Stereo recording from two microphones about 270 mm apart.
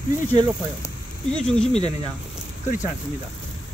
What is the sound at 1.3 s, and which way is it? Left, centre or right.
Speech, centre.